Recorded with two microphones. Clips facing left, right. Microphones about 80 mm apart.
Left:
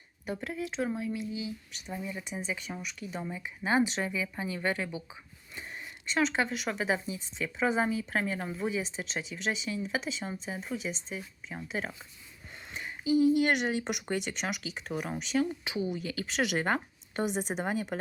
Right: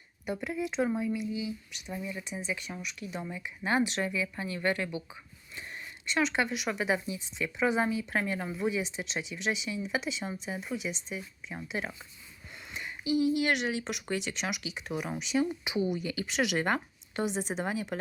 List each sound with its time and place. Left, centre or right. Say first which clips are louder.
0.3 s speech: right 2 dB; centre
2.0 s speech: even; left
2.2 s speech: even; centre
4.0 s speech: right 1 dB; centre
13.1 s speech: left 3 dB; centre
16.3 s speech: even; centre